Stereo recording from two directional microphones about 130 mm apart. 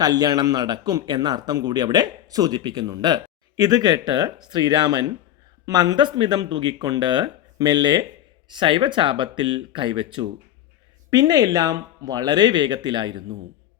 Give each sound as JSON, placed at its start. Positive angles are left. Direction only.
{"t": 0.0, "sound": "a man's voice", "side_deg": -30}